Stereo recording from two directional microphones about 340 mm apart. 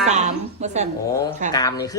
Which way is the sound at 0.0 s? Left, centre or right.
Centre.